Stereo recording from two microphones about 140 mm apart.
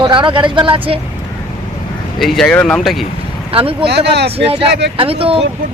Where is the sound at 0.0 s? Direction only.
35° right (ahead or behind).